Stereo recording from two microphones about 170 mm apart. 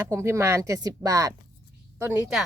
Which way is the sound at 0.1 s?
15° right (ahead or behind).